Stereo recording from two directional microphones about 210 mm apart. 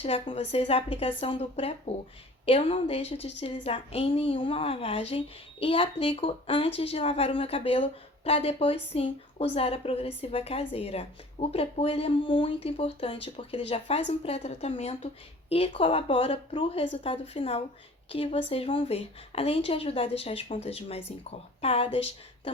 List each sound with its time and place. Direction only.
0.0 s a woman's voice: 25° left (ahead or behind)